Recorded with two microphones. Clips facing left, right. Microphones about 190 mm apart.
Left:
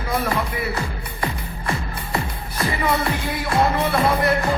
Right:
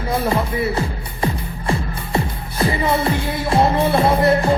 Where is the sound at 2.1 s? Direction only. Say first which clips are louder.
Right 5 dB; 25° right (ahead or behind).